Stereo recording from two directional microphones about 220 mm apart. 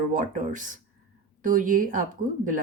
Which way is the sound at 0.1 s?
35° right (ahead or behind).